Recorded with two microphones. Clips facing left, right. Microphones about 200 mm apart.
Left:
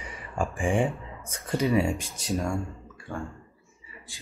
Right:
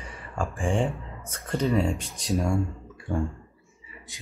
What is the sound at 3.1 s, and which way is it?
A man's voice, 15° right (ahead or behind).